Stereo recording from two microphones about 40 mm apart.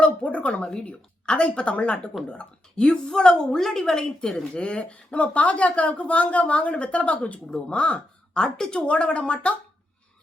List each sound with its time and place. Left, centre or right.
0.0 s speech: left
3.6 s a woman's voice: centre
4.5 s speech: left
8.4 s a woman's voice: centre
8.7 s speech: left